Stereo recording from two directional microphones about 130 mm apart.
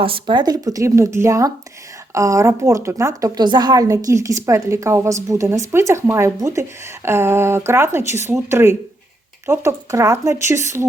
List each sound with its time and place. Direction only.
0.0 s a woman's voice: 40° right (ahead or behind); by 10.8 s 20° right (ahead or behind)